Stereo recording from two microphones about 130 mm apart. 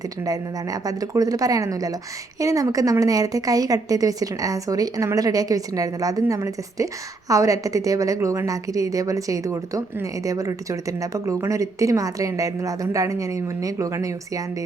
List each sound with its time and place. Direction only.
0.3 s a woman's voice: 30° right (ahead or behind)